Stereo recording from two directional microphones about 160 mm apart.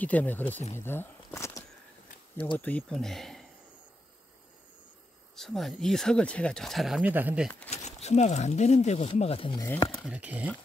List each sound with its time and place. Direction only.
0.0 s speech: 10° left (ahead or behind)
0.7 s a sound: 15° left (ahead or behind)
2.6 s speech: 5° left (ahead or behind)
5.3 s speech: centre (ahead or behind)
7.7 s speech: 45° left (ahead or behind)
10.0 s speech: 10° right (ahead or behind)